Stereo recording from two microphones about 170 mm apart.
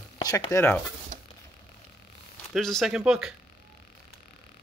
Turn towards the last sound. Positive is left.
turn(degrees=-5)  # may be behind; listen again after turning